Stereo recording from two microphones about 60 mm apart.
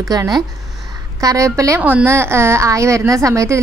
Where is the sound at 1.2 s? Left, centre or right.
Right.